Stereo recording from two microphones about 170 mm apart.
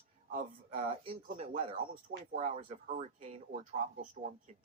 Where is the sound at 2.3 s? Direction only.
45° right (ahead or behind).